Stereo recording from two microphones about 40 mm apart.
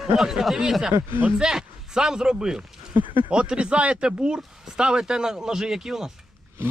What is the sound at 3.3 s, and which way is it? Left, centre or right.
Speech, right.